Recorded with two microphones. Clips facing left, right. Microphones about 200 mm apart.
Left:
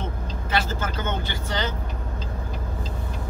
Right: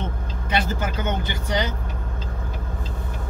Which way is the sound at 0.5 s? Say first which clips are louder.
Right 2 dB; 15° right (ahead or behind).